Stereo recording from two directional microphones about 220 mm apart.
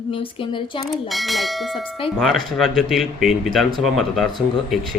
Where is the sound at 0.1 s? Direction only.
25° left (ahead or behind).